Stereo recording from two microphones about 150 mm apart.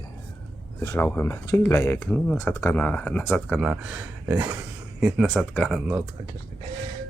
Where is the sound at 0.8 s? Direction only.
20° left (ahead or behind).